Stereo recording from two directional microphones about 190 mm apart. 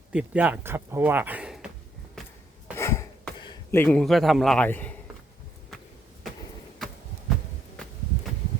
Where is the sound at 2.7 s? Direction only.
15° left (ahead or behind).